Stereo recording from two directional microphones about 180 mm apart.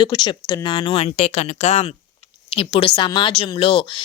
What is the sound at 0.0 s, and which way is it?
Speech, 25° left (ahead or behind).